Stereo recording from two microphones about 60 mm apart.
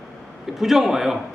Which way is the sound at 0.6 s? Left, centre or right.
Centre.